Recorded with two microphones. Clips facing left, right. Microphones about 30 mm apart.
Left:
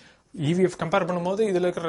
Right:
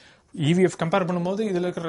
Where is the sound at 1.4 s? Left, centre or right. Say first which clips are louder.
Left 3 dB; centre.